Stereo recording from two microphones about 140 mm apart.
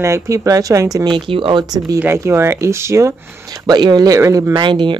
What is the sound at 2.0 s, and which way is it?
Speech, 20° right (ahead or behind).